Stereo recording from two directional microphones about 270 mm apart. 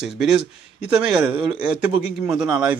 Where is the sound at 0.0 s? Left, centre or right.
Centre.